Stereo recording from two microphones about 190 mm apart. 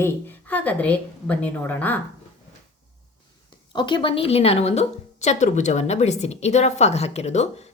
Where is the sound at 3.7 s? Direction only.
25° left (ahead or behind).